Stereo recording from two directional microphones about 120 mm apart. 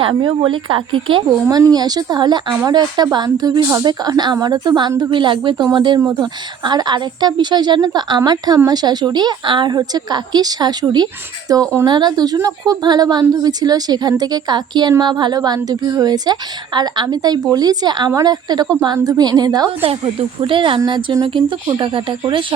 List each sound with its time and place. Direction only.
0.0 s a woman's voice: 40° right (ahead or behind)
1.5 s a woman's voice: 30° right (ahead or behind)
19.8 s speech: 50° right (ahead or behind)